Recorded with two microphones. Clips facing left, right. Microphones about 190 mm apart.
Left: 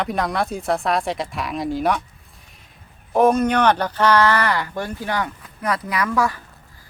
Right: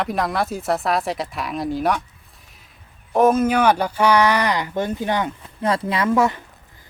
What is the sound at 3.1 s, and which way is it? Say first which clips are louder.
Speech: even; centre (ahead or behind).